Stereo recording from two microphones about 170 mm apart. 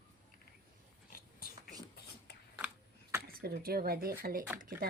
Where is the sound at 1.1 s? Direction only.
60° left (ahead or behind).